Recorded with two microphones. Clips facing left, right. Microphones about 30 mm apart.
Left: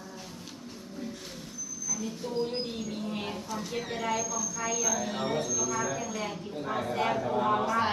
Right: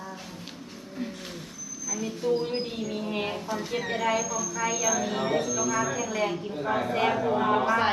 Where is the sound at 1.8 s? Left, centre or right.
Right.